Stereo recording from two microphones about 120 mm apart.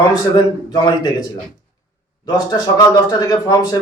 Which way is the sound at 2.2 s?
35° left (ahead or behind).